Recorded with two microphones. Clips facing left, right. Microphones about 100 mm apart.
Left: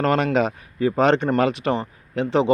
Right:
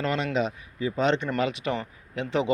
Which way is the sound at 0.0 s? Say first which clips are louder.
Left 7 dB; 50° left (ahead or behind).